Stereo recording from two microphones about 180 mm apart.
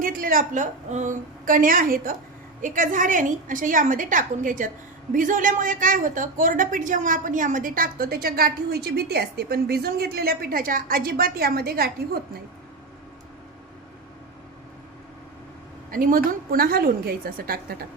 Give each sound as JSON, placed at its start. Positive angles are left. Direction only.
{"t": 0.0, "sound": "a woman's voice", "side_deg": -50}
{"t": 15.9, "sound": "a woman's voice", "side_deg": -50}